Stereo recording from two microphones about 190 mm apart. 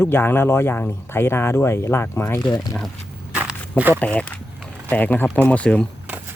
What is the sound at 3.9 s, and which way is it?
Speech, 5° left (ahead or behind).